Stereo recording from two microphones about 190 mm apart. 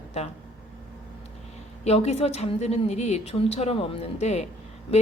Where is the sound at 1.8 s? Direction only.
35° left (ahead or behind).